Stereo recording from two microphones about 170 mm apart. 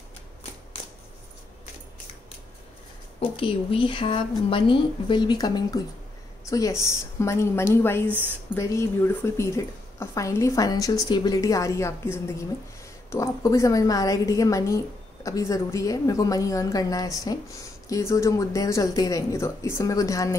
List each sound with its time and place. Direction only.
3.2 s a woman's voice: 30° left (ahead or behind)